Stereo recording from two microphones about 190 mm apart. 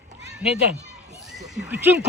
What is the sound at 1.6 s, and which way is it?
Speech, 10° right (ahead or behind).